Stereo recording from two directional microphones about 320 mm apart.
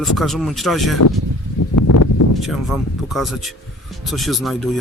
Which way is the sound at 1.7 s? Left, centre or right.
Left.